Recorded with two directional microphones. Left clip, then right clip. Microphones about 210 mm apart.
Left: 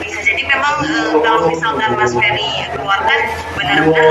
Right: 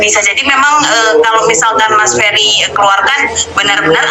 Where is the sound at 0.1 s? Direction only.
45° right (ahead or behind).